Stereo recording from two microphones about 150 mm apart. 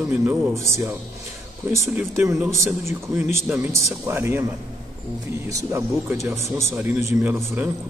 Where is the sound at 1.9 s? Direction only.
10° right (ahead or behind).